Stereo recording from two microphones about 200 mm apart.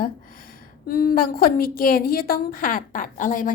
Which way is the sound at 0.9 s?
45° left (ahead or behind).